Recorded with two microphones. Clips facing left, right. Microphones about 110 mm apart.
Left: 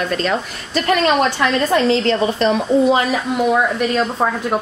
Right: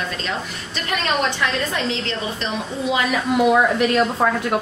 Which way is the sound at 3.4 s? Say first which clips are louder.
Right 1 dB; 5° right (ahead or behind).